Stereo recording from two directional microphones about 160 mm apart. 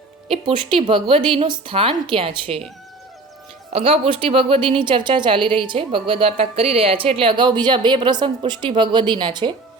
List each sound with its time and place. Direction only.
0.3 s a woman's voice: 30° right (ahead or behind)
3.7 s a woman's voice: 35° right (ahead or behind)